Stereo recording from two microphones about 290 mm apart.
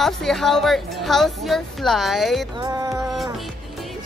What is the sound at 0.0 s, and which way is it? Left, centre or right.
A woman's voice, centre.